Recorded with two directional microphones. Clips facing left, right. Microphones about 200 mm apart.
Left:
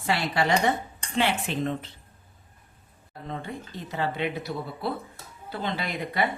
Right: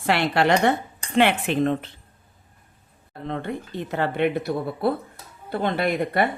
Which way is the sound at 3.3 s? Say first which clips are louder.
Right 6 dB; 60° right (ahead or behind).